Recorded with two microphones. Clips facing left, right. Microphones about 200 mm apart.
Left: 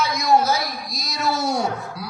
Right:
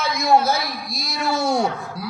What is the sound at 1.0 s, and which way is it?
Speech, 55° right (ahead or behind).